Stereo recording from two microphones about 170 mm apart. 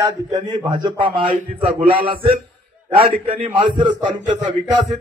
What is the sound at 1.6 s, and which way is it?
Speech, 50° right (ahead or behind).